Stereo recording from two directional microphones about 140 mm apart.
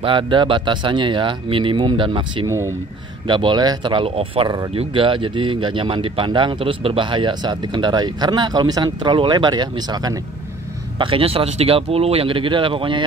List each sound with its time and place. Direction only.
0.0 s speech: 35° right (ahead or behind)
2.4 s speech: 20° right (ahead or behind)
3.3 s speech: 35° right (ahead or behind)
11.0 s speech: 40° right (ahead or behind)